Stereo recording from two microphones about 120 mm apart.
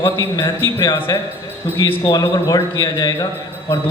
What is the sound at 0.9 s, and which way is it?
Speech, 20° left (ahead or behind).